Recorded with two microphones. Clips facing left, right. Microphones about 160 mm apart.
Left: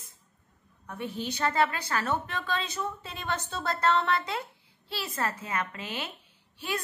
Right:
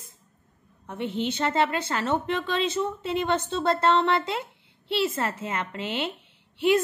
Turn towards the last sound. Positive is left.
turn(degrees=-25)  # may be behind; listen again after turning